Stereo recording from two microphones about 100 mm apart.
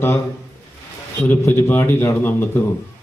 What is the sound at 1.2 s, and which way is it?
A man's voice, 20° left (ahead or behind).